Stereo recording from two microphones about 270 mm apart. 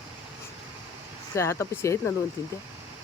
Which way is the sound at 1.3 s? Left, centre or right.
Centre.